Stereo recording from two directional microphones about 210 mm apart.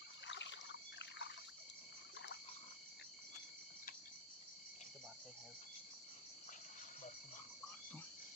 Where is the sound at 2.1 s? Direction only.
55° left (ahead or behind).